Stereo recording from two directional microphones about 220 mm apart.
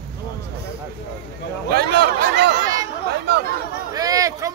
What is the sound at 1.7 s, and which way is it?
Speech, 45° right (ahead or behind).